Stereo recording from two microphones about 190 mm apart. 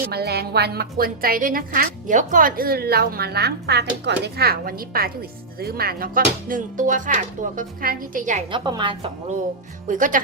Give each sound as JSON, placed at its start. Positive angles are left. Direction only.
{"t": 0.1, "sound": "a woman's voice", "side_deg": -55}
{"t": 8.4, "sound": "a woman's voice", "side_deg": -25}
{"t": 9.8, "sound": "a woman's voice", "side_deg": -45}